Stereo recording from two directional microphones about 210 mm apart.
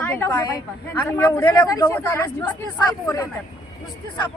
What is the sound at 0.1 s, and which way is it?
A woman's voice, 15° left (ahead or behind).